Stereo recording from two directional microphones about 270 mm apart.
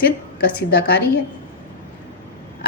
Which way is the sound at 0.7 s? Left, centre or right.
Left.